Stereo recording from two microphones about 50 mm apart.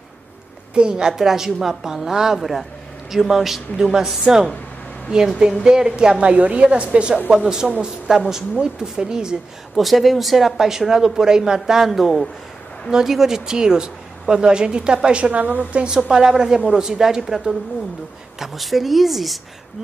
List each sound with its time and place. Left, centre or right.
0.7 s a woman's voice: centre
9.8 s speech: centre; by 15.8 s right
15.8 s speech: centre
18.4 s speech: centre